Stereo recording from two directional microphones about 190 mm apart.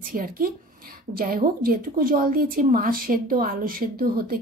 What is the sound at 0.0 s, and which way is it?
A woman's voice, 50° right (ahead or behind).